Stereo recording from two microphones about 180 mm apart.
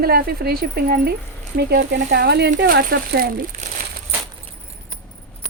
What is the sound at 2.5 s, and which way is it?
Speech, 55° right (ahead or behind).